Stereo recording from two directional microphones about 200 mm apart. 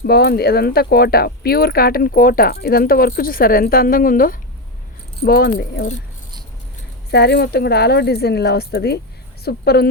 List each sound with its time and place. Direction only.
0.0 s speech: 50° left (ahead or behind)
7.1 s speech: 55° left (ahead or behind)